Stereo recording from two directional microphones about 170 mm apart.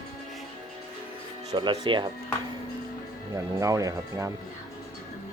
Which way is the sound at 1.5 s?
25° right (ahead or behind).